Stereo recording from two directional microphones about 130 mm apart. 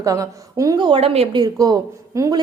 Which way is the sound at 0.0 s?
25° right (ahead or behind).